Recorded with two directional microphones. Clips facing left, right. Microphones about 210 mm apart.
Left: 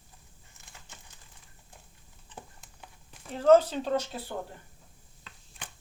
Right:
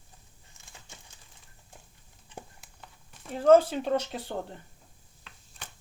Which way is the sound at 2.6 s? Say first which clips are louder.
Left 1 dB; centre (ahead or behind).